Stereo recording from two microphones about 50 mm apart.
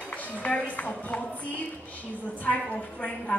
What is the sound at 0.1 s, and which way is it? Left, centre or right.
Music, left.